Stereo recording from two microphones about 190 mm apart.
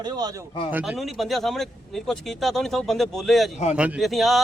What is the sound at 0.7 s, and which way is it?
Speech, 5° right (ahead or behind).